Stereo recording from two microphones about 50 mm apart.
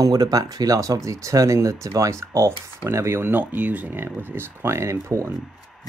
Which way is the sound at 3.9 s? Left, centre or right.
Right.